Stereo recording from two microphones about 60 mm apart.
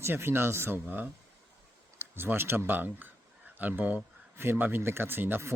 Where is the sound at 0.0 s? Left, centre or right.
Right.